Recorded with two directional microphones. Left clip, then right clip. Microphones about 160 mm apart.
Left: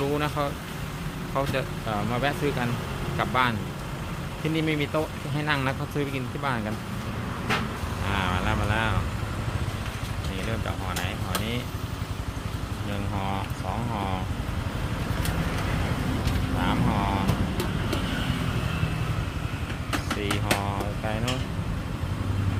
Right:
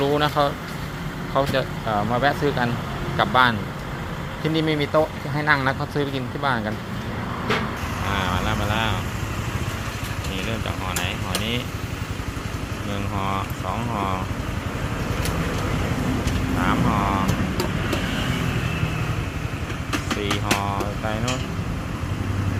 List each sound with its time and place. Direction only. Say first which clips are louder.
0.0 s speech: right 7 dB; centre (ahead or behind)
4.5 s speech: right 6 dB; 5° left (ahead or behind)
8.1 s speech: right 2 dB; 20° left (ahead or behind)
16.6 s speech: right 5 dB; 15° left (ahead or behind)